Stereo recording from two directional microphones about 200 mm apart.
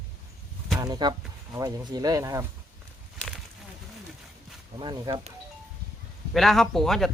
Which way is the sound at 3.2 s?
Centre (ahead or behind).